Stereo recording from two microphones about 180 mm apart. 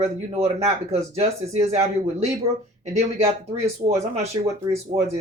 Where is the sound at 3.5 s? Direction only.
35° right (ahead or behind).